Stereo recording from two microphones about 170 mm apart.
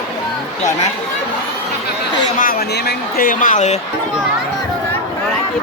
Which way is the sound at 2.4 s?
60° left (ahead or behind).